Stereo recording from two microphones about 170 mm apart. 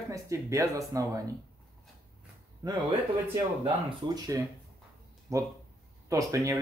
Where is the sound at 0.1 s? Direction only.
20° right (ahead or behind).